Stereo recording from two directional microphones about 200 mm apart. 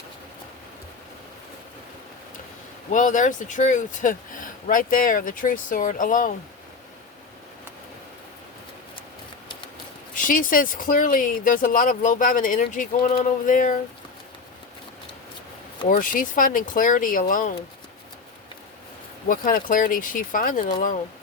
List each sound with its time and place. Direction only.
2.9 s speech: 40° left (ahead or behind)
10.2 s speech: 40° left (ahead or behind)
15.9 s speech: 40° left (ahead or behind)
19.3 s speech: 45° left (ahead or behind)